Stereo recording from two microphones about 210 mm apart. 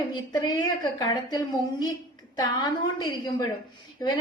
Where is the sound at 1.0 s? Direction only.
20° left (ahead or behind).